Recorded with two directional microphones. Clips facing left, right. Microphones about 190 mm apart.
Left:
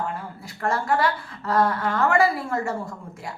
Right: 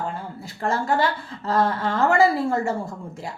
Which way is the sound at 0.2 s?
25° right (ahead or behind).